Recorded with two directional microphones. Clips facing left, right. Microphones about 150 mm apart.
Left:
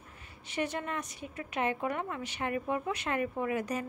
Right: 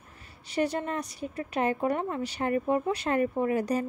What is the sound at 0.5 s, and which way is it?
Speech, 35° right (ahead or behind).